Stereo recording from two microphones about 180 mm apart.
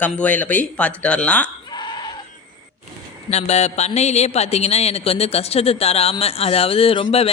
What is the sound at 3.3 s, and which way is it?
Speech, 40° left (ahead or behind).